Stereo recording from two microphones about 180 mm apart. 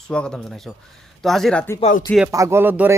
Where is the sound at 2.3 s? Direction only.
15° right (ahead or behind).